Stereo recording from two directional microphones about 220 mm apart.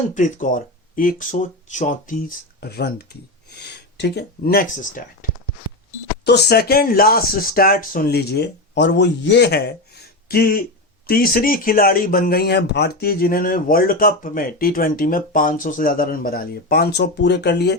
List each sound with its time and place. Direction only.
0.1 s speech: 35° left (ahead or behind)
2.6 s speech: 45° left (ahead or behind)
6.2 s speech: 50° left (ahead or behind)